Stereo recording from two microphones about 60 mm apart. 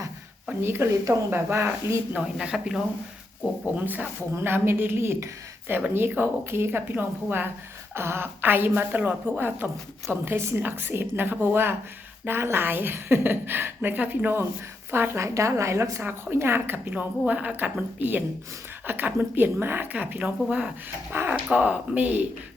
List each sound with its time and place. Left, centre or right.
0.6 s a woman's voice: right
2.1 s speech: centre
3.8 s a woman's voice: right
4.4 s a woman's voice: right
15.4 s a woman's voice: right
16.9 s a woman's voice: right